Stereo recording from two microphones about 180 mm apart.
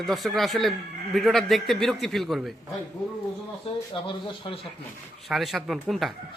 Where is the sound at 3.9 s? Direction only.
25° left (ahead or behind).